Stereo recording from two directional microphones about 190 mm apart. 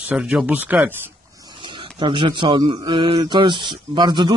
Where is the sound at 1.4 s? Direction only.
25° right (ahead or behind).